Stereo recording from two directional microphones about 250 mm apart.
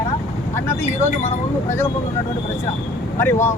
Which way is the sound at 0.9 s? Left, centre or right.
Left.